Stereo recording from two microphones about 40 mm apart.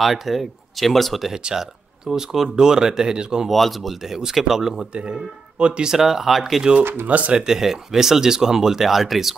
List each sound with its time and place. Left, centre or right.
0.0 s speech: centre
1.3 s speech: centre
3.4 s speech: centre
4.9 s speech: right
5.9 s speech: centre
6.8 s speech: right
7.1 s speech: right
7.3 s speech: centre